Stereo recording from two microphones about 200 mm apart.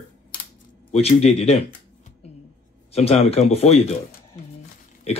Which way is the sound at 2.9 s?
30° left (ahead or behind).